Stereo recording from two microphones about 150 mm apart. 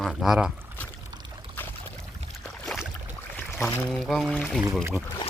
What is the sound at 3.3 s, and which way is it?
Boat, 15° left (ahead or behind).